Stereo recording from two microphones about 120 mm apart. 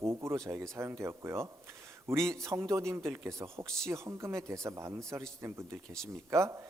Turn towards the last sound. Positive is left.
turn(degrees=-25)  # may be behind; listen again after turning